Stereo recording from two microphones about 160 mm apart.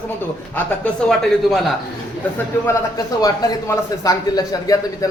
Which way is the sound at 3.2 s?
20° left (ahead or behind).